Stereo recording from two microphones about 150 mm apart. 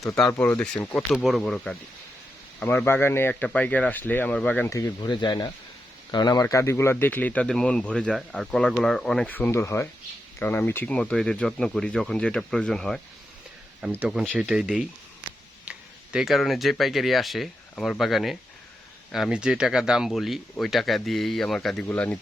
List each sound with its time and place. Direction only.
0.0 s speech: 25° left (ahead or behind)
0.3 s speech: 10° left (ahead or behind)
14.0 s speech: 5° right (ahead or behind)
16.1 s speech: centre (ahead or behind)